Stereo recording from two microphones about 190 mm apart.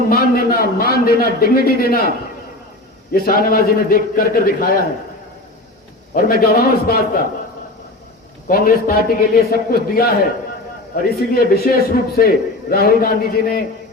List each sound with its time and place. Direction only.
0.1 s a man's voice: 50° left (ahead or behind)
6.1 s a man's voice: 50° left (ahead or behind)
8.4 s a man's voice: 50° left (ahead or behind)